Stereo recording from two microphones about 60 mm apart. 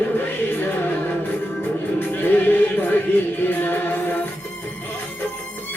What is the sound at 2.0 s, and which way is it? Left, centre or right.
Music, left.